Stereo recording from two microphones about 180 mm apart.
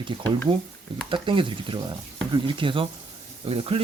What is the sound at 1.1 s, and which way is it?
Speech, 30° right (ahead or behind).